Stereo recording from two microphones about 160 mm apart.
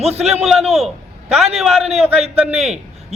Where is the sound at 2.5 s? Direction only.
40° right (ahead or behind).